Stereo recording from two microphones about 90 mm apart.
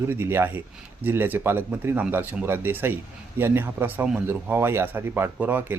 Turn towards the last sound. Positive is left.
turn(degrees=-20)  # may be behind; listen again after turning